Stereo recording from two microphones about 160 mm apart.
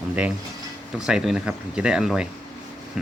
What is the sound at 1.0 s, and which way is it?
Speech, 5° right (ahead or behind).